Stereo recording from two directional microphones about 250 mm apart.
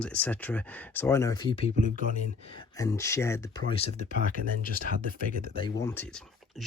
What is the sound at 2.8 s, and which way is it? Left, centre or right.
Speech, centre.